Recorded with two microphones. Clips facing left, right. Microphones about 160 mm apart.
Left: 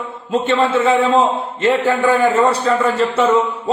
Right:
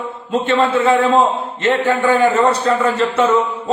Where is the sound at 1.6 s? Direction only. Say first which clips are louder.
Left 1 dB; 10° left (ahead or behind).